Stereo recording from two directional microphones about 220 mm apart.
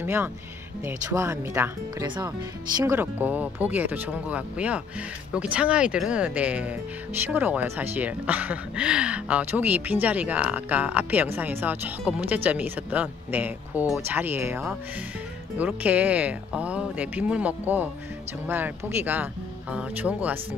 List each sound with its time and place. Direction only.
0.0 s speech: 10° right (ahead or behind)
2.8 s speech: 10° right (ahead or behind)